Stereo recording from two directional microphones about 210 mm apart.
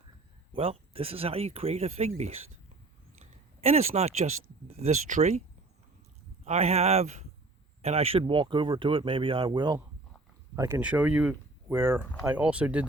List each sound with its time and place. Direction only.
0.5 s speech: 25° right (ahead or behind)
3.6 s speech: 30° right (ahead or behind)
6.4 s speech: 30° right (ahead or behind); by 12.8 s 5° right (ahead or behind)